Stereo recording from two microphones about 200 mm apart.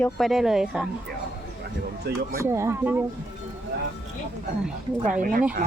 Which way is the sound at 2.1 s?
55° right (ahead or behind).